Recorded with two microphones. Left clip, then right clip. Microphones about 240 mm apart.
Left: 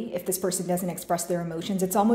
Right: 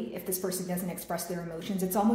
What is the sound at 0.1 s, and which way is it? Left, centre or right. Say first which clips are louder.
A woman's voice: left 9 dB; left.